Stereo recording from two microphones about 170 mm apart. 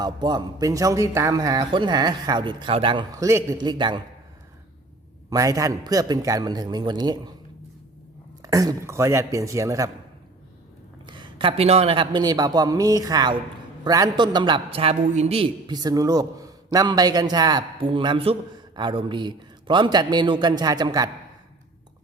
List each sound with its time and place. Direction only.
0.0 s a man's voice: 25° right (ahead or behind)
5.3 s a man's voice: 20° right (ahead or behind)
8.4 s a man's voice: 20° right (ahead or behind)
11.0 s a man's voice: 25° right (ahead or behind)